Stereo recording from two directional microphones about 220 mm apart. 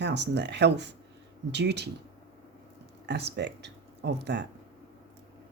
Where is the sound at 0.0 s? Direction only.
50° right (ahead or behind).